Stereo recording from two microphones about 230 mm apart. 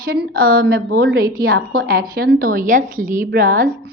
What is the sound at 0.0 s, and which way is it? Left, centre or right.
A woman's voice, right.